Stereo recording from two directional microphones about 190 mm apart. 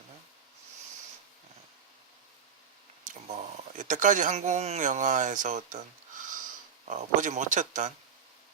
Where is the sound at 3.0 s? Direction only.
40° right (ahead or behind).